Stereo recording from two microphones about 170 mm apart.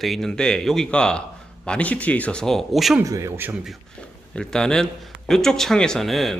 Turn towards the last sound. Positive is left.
turn(degrees=0)  # may be behind; listen again after turning